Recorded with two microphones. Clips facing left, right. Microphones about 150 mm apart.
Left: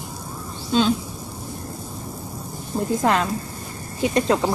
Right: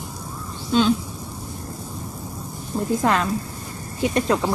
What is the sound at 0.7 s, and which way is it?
Speech, 30° left (ahead or behind).